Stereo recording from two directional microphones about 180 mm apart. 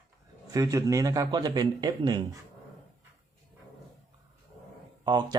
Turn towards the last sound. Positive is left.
turn(degrees=-25)  # may be behind; listen again after turning